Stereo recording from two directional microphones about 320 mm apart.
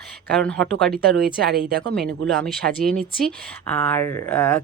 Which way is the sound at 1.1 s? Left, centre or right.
Right.